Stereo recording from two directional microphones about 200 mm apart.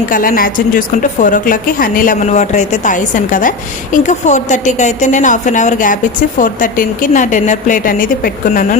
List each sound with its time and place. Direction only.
0.1 s a woman's voice: 45° left (ahead or behind)